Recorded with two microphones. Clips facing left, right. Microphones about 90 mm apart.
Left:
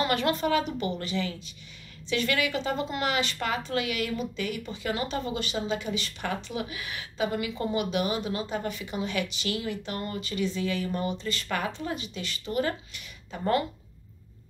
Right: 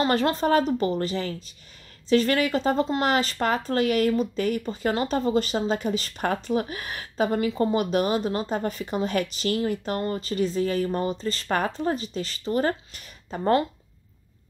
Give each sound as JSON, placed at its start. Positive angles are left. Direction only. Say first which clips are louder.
{"t": 0.0, "sound": "speech", "louder": "right 4 dB", "side_deg": -35}